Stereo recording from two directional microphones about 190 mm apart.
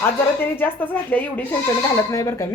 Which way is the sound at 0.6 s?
10° left (ahead or behind).